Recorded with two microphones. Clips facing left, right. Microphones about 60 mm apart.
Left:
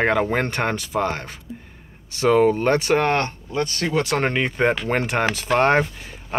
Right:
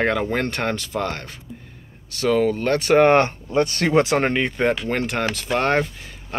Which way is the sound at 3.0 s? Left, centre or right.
Right.